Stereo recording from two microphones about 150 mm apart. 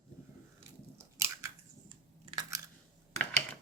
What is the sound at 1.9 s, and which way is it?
Camera, 30° right (ahead or behind).